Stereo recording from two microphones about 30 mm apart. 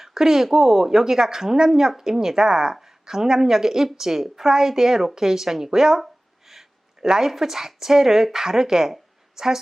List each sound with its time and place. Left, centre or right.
0.0 s a sound: centre
0.4 s speech: centre
7.0 s speech: centre